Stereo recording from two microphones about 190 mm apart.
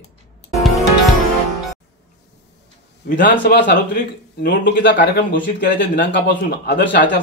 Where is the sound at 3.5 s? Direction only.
55° left (ahead or behind).